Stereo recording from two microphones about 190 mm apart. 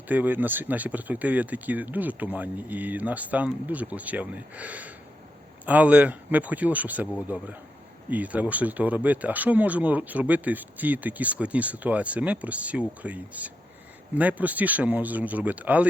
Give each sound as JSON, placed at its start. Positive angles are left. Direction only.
{"t": 0.1, "sound": "speech", "side_deg": -10}